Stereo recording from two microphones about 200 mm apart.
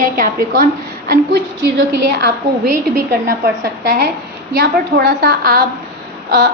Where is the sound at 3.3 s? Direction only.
50° right (ahead or behind).